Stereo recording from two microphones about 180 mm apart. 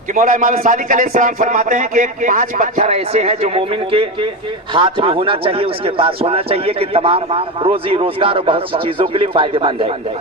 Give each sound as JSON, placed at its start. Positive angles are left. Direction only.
{"t": 0.1, "sound": "a man's voice", "side_deg": -45}